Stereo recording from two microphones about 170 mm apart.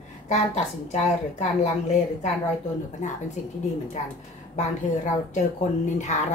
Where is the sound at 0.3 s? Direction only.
45° left (ahead or behind).